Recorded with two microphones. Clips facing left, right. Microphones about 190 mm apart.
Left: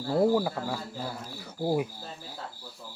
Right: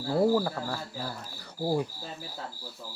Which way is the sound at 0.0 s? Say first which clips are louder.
Left 1 dB; centre (ahead or behind).